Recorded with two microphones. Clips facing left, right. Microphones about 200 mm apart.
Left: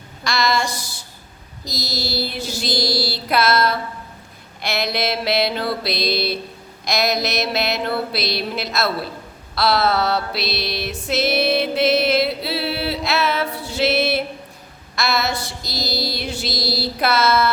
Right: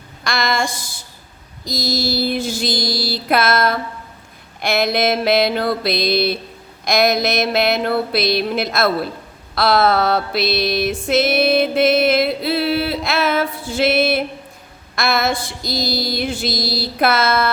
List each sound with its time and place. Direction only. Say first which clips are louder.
0.3 s mantra: even; 50° right (ahead or behind)
9.6 s music: right 3 dB; 50° right (ahead or behind)
14.9 s mantra: right 3 dB; 50° right (ahead or behind)